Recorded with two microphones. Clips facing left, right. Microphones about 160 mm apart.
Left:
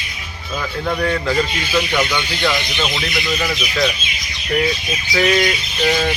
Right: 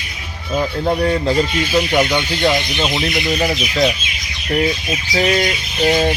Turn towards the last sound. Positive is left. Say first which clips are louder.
# right 3 dB
turn(degrees=-35)  # may be behind; listen again after turning